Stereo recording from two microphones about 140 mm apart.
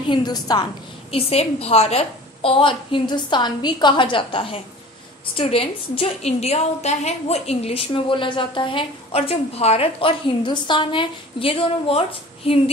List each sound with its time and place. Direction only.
0.1 s a woman's voice: 30° left (ahead or behind)
1.1 s a woman's voice: 45° left (ahead or behind)